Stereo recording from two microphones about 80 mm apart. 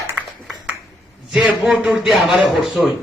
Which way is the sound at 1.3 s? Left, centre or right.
Centre.